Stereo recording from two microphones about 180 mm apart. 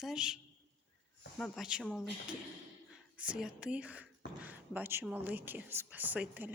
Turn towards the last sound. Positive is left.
turn(degrees=-10)  # may be behind; listen again after turning